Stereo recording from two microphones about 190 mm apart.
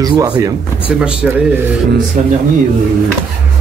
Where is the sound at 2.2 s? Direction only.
40° right (ahead or behind).